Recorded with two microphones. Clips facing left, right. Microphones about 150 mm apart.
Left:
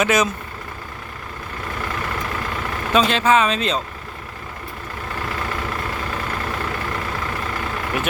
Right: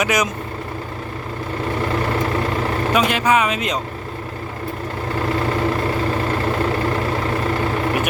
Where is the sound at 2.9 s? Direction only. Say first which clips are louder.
Left 2 dB; 15° right (ahead or behind).